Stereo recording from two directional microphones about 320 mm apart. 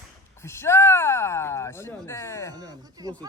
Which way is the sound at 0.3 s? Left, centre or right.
Centre.